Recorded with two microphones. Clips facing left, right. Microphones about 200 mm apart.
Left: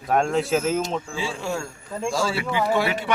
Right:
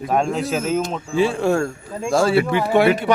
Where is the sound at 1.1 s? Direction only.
60° right (ahead or behind).